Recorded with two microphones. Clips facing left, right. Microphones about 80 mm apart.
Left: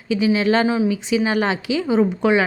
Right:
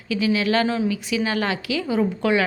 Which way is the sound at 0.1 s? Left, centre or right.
Left.